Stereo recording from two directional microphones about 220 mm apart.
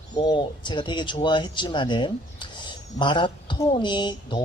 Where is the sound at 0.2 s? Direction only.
20° left (ahead or behind).